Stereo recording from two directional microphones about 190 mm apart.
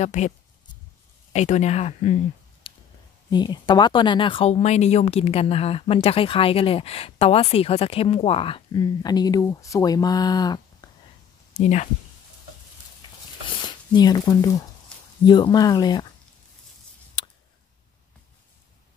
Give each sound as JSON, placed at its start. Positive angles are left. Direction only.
{"t": 0.0, "sound": "speech", "side_deg": 40}
{"t": 1.3, "sound": "speech", "side_deg": 35}
{"t": 2.6, "sound": "a sound", "side_deg": 25}
{"t": 3.3, "sound": "speech", "side_deg": 25}
{"t": 10.8, "sound": "a sound", "side_deg": 20}
{"t": 11.5, "sound": "speech", "side_deg": 40}
{"t": 13.6, "sound": "speech", "side_deg": 20}